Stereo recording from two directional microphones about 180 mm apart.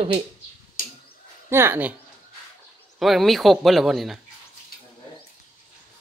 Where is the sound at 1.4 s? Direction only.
15° right (ahead or behind).